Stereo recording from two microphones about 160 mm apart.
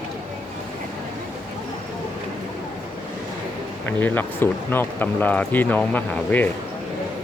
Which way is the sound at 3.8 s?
10° left (ahead or behind).